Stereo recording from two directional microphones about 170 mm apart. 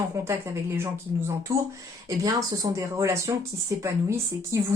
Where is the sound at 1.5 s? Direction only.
15° right (ahead or behind).